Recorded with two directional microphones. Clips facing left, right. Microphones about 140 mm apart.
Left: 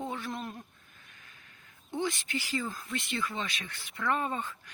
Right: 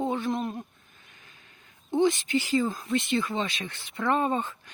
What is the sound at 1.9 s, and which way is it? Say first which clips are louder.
Speech: right 10 dB; 20° right (ahead or behind).